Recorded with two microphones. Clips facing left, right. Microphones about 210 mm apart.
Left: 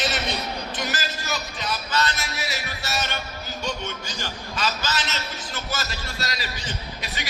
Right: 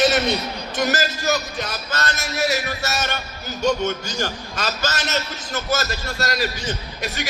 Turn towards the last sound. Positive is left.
turn(degrees=-45)  # may be behind; listen again after turning